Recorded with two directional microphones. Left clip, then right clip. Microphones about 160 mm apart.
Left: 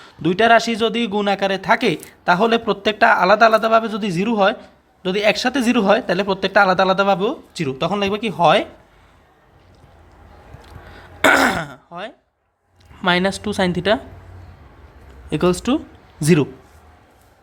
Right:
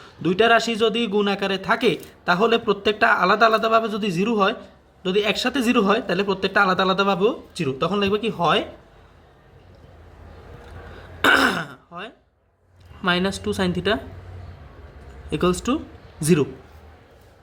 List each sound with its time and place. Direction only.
0.0 s a man's voice: 35° left (ahead or behind)
10.9 s a sound: 35° left (ahead or behind)
13.0 s a man's voice: 35° left (ahead or behind)
15.3 s speech: 35° left (ahead or behind)